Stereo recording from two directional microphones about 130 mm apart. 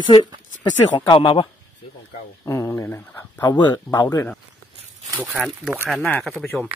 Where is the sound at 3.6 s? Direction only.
35° left (ahead or behind).